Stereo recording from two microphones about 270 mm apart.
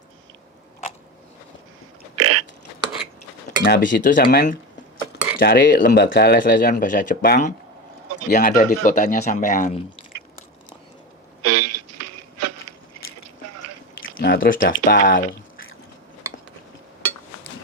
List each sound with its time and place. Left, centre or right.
2.1 s burping: right
3.6 s a man's voice: left
11.4 s music: right
14.0 s a sound: left
14.8 s speech: left